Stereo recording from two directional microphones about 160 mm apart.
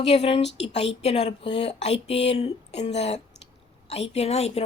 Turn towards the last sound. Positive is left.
turn(degrees=40)  # may be behind; listen again after turning